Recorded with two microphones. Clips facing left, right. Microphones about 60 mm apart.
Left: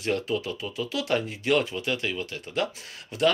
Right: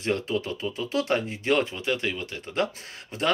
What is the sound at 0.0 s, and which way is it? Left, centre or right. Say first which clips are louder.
Speech: even; right.